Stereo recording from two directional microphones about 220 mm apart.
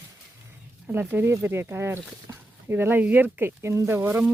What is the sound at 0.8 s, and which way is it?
Speech, 10° right (ahead or behind).